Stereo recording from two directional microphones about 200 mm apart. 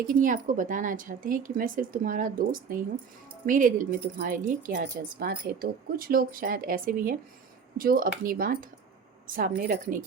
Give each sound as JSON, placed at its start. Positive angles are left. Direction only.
{"t": 0.0, "sound": "speech", "side_deg": -40}